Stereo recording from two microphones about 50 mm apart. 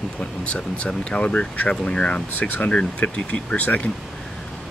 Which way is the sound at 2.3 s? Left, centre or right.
Left.